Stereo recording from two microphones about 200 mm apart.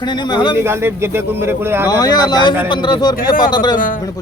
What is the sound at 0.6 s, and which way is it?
Speech, 10° right (ahead or behind).